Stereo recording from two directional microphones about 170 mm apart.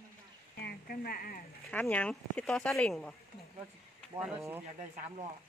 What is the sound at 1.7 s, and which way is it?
Speech, 10° left (ahead or behind).